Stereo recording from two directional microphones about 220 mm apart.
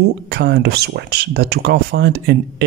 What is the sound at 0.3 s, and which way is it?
Speech, 50° right (ahead or behind).